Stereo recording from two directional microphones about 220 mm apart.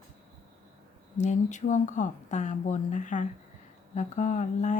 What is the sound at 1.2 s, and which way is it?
Speech, 35° left (ahead or behind).